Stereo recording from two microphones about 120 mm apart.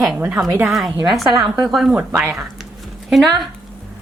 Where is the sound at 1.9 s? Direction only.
20° right (ahead or behind).